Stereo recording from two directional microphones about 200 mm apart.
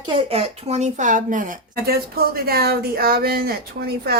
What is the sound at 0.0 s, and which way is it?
A woman's voice, 30° right (ahead or behind).